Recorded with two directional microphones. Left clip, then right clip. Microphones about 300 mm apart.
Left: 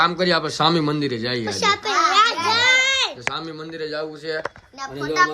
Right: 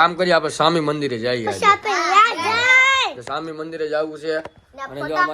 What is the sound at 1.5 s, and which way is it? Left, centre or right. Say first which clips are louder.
Children playing: right 2 dB; centre.